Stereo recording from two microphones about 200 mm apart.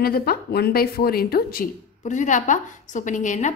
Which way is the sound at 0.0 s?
50° left (ahead or behind).